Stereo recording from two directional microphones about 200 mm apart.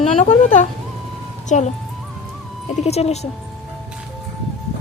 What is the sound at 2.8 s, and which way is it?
Speech, 30° left (ahead or behind).